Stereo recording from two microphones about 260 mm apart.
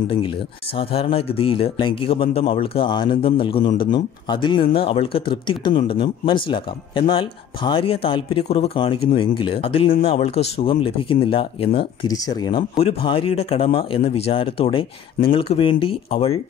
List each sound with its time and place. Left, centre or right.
0.7 s speech: left